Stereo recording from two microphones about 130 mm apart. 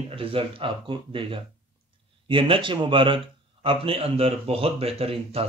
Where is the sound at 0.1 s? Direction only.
45° right (ahead or behind).